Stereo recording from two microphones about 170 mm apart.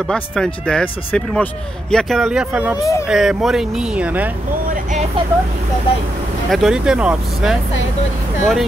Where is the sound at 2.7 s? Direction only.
20° left (ahead or behind).